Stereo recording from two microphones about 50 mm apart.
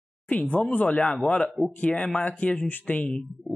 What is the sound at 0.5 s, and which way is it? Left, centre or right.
Speech, left.